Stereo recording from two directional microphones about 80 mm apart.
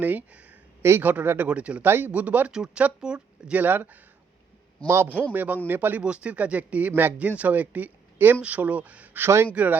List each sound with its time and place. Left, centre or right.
0.0 s a sound: right
0.9 s speech: right
3.6 s speech: right
5.3 s speech: right
6.0 s speech: centre
9.2 s speech: right